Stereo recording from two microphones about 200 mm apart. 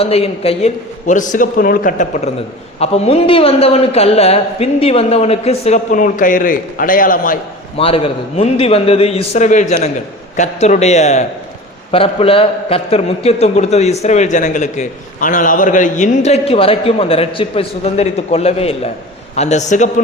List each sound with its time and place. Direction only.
0.0 s a man's voice: 30° left (ahead or behind)
7.8 s a man's voice: 30° left (ahead or behind)